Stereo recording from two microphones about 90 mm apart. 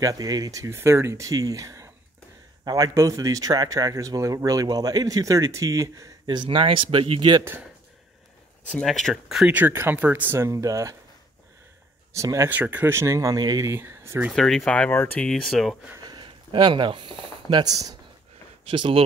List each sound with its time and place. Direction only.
0.0 s speech: 40° right (ahead or behind)
6.2 s speech: 60° right (ahead or behind); by 7.3 s 75° right (ahead or behind)
8.8 s speech: centre (ahead or behind)
9.5 s speech: 20° right (ahead or behind); by 11.0 s 35° right (ahead or behind)
12.1 s speech: 35° right (ahead or behind)
12.4 s speech: 20° right (ahead or behind); by 13.7 s 40° right (ahead or behind)
13.7 s speech: 25° right (ahead or behind)
14.3 s speech: 5° left (ahead or behind)
15.2 s speech: 5° left (ahead or behind)
16.1 s speech: 60° right (ahead or behind)
18.7 s speech: 75° right (ahead or behind)